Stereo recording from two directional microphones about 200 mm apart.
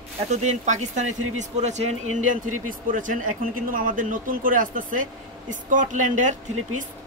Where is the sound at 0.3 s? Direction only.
35° right (ahead or behind).